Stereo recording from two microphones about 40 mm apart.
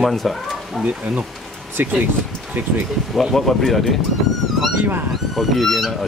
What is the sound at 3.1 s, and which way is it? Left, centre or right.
Speech, centre.